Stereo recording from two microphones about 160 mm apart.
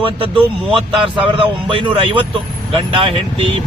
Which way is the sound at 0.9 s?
30° right (ahead or behind).